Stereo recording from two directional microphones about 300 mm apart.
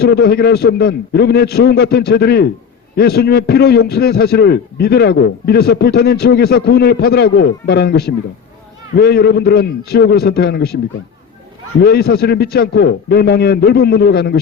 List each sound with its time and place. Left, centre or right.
0.0 s a man's voice: left
11.8 s a man's voice: left